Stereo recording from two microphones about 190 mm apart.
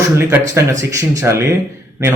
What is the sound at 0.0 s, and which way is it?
A man's voice, 15° right (ahead or behind).